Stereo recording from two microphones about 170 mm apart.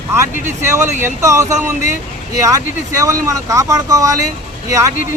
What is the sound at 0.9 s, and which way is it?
Speech, 15° right (ahead or behind).